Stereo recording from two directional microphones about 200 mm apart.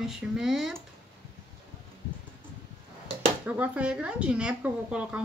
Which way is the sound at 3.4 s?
5° right (ahead or behind).